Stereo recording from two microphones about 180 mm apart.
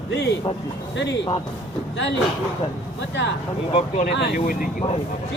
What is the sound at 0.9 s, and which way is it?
Speech, 75° left (ahead or behind).